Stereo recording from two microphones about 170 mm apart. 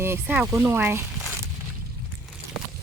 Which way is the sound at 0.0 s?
10° right (ahead or behind).